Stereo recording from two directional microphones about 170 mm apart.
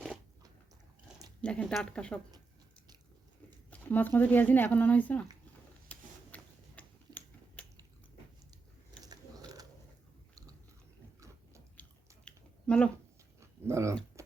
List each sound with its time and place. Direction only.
1.4 s speech: 5° left (ahead or behind)
3.7 s speech: 10° left (ahead or behind)
5.9 s tick-tock: 10° left (ahead or behind)
9.0 s gears: 20° right (ahead or behind)
11.8 s chewing: 5° left (ahead or behind)
13.7 s speech: 15° right (ahead or behind)
14.2 s music: 15° right (ahead or behind)